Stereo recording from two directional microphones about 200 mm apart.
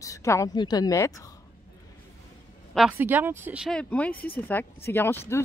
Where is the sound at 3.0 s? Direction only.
10° right (ahead or behind).